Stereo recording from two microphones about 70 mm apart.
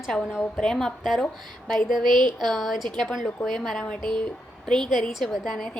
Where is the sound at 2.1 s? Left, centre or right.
Right.